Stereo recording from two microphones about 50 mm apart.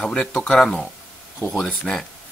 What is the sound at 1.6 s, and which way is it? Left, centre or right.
Speech, centre.